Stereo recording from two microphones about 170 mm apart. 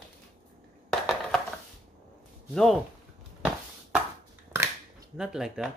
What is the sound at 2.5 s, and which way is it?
Speech, centre (ahead or behind).